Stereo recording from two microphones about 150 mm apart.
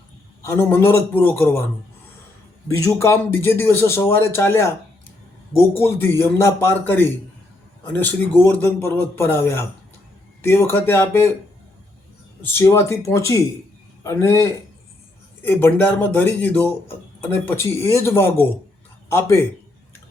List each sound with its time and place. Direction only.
0.4 s a man's voice: 15° left (ahead or behind)
2.6 s a man's voice: 20° left (ahead or behind)
5.8 s a man's voice: 15° left (ahead or behind)
12.4 s a man's voice: 15° left (ahead or behind)